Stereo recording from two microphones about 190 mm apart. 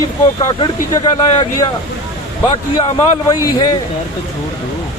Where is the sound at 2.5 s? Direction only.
30° left (ahead or behind).